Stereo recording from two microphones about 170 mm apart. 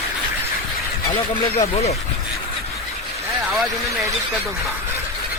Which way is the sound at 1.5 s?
40° left (ahead or behind).